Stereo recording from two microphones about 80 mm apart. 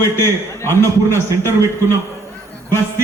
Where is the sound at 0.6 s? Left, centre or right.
Left.